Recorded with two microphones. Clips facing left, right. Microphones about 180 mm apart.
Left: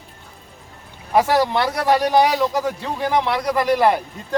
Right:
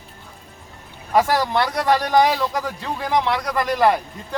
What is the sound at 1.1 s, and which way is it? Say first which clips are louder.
A man's voice: left 1 dB; 10° left (ahead or behind).